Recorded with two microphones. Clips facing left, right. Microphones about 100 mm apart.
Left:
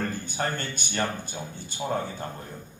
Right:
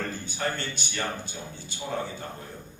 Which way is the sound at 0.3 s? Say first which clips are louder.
Left 1 dB; 50° left (ahead or behind).